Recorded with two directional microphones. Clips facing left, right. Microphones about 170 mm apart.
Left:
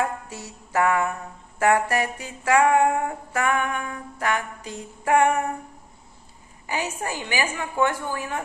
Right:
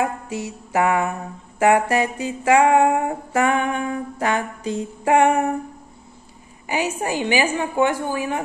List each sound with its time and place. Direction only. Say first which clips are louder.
0.0 s a woman's voice: right 4 dB; 15° right (ahead or behind)
1.6 s a sound: right 4 dB; 20° right (ahead or behind)
6.7 s a woman's voice: right 5 dB; 15° right (ahead or behind)